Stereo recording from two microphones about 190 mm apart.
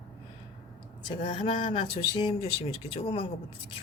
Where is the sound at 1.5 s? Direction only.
40° left (ahead or behind).